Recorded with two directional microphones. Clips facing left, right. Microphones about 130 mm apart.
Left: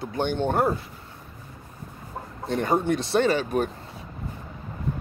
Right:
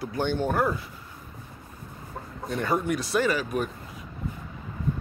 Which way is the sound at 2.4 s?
30° left (ahead or behind).